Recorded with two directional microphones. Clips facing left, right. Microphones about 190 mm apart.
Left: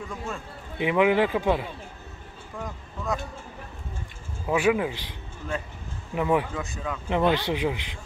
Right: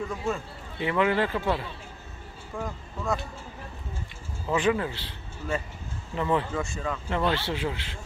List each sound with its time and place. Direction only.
0.7 s speech: 15° left (ahead or behind)
2.5 s speech: centre (ahead or behind)
4.5 s speech: 10° left (ahead or behind)
5.5 s speech: 5° right (ahead or behind)
6.1 s speech: 15° left (ahead or behind)
6.5 s speech: centre (ahead or behind)
7.1 s speech: 15° left (ahead or behind)